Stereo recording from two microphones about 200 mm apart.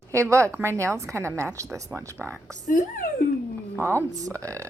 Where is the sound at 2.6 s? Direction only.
40° left (ahead or behind).